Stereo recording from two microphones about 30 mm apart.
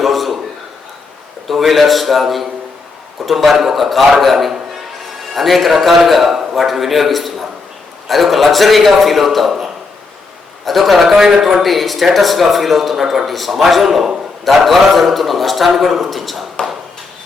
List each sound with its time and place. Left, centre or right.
0.0 s a sound: centre
1.5 s a man's voice: centre
6.3 s a sound: centre
6.7 s a man's voice: centre
10.7 s a man's voice: centre
11.1 s a man's voice: centre
11.6 s a man's voice: centre